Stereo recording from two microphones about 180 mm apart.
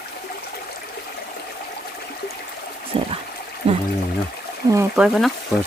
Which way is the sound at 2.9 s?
30° right (ahead or behind).